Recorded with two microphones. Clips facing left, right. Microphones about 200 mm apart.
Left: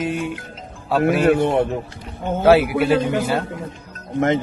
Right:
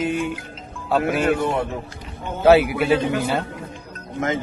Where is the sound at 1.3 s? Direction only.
55° left (ahead or behind).